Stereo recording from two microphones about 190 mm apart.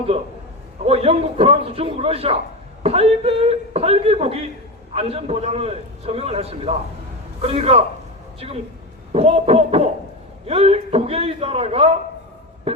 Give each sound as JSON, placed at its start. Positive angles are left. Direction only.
{"t": 0.9, "sound": "a man's voice", "side_deg": -30}
{"t": 12.7, "sound": "music", "side_deg": -30}